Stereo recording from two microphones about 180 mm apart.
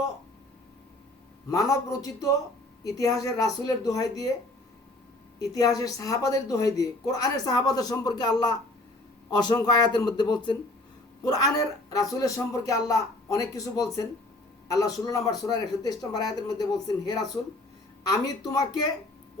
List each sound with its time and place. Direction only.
1.5 s a woman's voice: 20° left (ahead or behind)
5.4 s a woman's voice: 20° left (ahead or behind)